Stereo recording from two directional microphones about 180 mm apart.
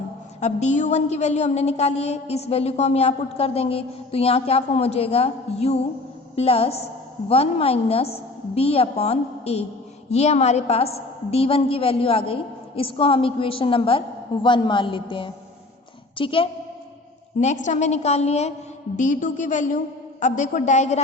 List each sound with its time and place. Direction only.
0.3 s a woman's voice: 40° left (ahead or behind)
17.4 s a woman's voice: 40° left (ahead or behind)